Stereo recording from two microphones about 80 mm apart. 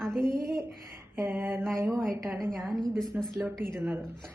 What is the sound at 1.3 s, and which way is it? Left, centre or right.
Speech, right.